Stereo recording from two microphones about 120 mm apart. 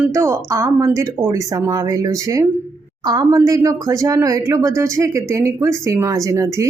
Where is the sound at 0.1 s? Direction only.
25° right (ahead or behind).